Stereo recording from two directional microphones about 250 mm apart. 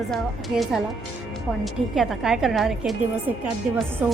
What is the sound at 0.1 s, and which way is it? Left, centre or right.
A woman's voice, centre.